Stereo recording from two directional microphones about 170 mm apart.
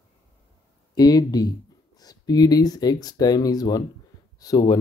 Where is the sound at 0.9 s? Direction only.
25° left (ahead or behind).